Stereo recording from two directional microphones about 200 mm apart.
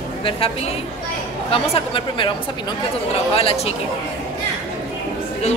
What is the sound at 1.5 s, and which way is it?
Speech, 25° left (ahead or behind).